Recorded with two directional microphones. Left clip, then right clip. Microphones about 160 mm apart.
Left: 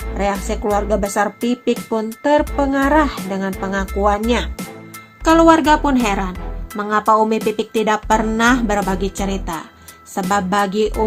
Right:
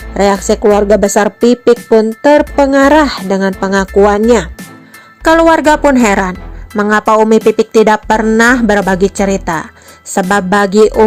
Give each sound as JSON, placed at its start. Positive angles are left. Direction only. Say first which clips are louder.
{"t": 0.2, "sound": "a woman's voice", "louder": "right 11 dB", "side_deg": -45}
{"t": 5.2, "sound": "a woman's voice", "louder": "right 5 dB", "side_deg": -40}
{"t": 5.9, "sound": "a woman's voice", "louder": "right 8 dB", "side_deg": -25}
{"t": 6.7, "sound": "a woman's voice", "louder": "right 6 dB", "side_deg": -40}